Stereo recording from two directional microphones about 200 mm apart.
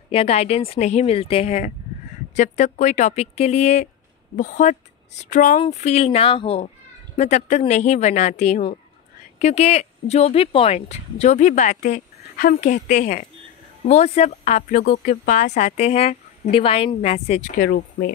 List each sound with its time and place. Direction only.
0.1 s speech: 30° left (ahead or behind)
17.6 s speech: 60° left (ahead or behind)